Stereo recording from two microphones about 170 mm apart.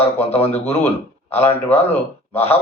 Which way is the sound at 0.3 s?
35° left (ahead or behind).